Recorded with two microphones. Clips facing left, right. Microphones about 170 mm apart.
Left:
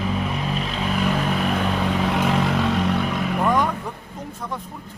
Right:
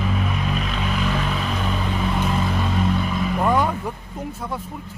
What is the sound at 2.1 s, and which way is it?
Vehicle, 80° left.